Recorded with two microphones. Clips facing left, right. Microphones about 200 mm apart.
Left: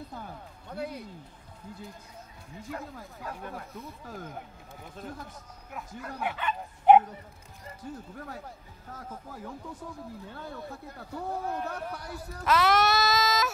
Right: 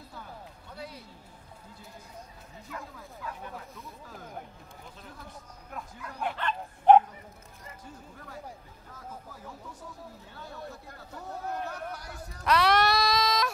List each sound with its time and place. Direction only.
0.7 s speech: 55° left (ahead or behind)
2.7 s speech: 45° left (ahead or behind)
4.9 s speech: 50° left (ahead or behind)
6.2 s speech: 10° left (ahead or behind)
11.7 s speech: 60° left (ahead or behind)
12.4 s a sound: centre (ahead or behind)